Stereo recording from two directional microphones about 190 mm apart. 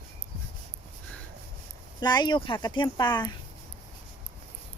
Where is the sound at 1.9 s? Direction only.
20° left (ahead or behind).